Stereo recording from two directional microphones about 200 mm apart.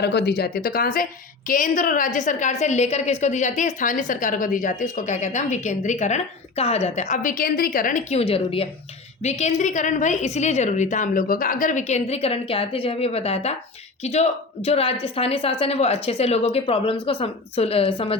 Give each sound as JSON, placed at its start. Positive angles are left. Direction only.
{"t": 0.0, "sound": "a woman's voice", "side_deg": 55}